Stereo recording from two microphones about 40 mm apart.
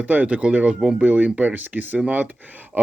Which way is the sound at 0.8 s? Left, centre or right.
Centre.